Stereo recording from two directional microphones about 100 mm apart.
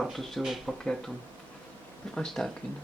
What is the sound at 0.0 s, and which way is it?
Speech, centre (ahead or behind).